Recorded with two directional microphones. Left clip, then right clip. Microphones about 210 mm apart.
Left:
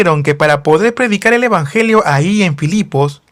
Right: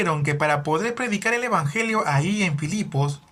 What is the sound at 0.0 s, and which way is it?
Speech, 50° left (ahead or behind).